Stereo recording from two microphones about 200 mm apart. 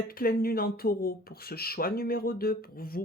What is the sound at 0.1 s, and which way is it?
Speech, 45° left (ahead or behind).